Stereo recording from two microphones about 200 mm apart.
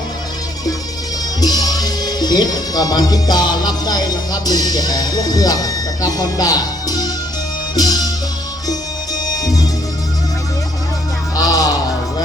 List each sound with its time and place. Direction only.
1.4 s music: 20° left (ahead or behind)
11.3 s music: 20° left (ahead or behind)